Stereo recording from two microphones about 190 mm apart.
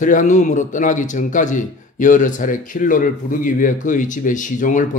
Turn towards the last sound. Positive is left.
turn(degrees=40)  # may be behind; listen again after turning